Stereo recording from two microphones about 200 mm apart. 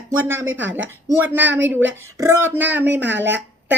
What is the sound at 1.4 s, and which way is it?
Speech, 60° right (ahead or behind).